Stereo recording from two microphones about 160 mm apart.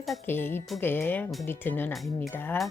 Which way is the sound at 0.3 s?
15° left (ahead or behind).